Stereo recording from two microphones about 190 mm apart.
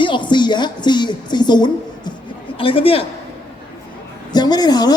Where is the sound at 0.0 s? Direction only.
25° left (ahead or behind).